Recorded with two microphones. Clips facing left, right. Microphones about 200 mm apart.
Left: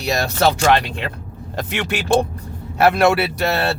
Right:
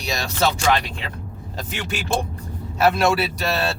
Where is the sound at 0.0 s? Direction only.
60° left (ahead or behind).